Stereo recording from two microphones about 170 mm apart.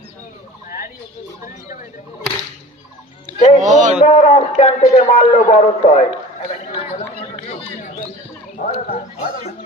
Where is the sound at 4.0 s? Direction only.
35° left (ahead or behind).